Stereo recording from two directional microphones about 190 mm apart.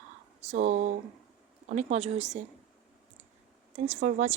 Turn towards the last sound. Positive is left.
turn(degrees=-40)  # may be behind; listen again after turning